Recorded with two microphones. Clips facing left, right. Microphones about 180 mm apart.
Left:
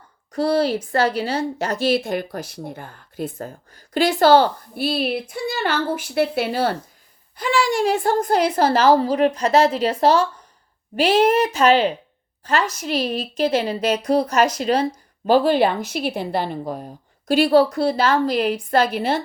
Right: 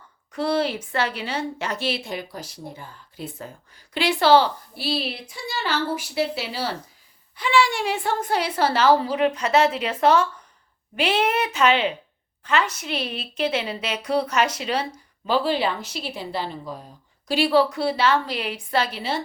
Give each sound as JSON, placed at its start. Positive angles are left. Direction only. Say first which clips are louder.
{"t": 0.3, "sound": "a woman's voice", "louder": "left 4 dB", "side_deg": 40}